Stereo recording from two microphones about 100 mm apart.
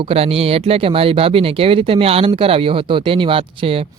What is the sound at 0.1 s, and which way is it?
Speech, 75° right (ahead or behind).